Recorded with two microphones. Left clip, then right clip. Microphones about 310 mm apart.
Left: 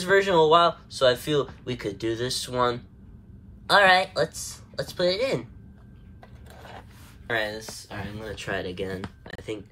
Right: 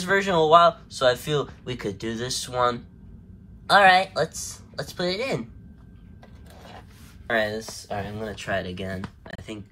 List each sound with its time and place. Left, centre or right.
0.0 s speech: centre
7.2 s speech: centre
9.3 s a sound: centre